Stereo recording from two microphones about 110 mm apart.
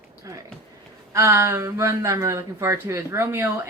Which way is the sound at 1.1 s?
25° right (ahead or behind).